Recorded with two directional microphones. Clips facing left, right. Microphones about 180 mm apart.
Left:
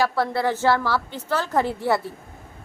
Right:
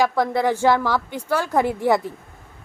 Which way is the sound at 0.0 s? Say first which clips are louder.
Right 3 dB; 15° right (ahead or behind).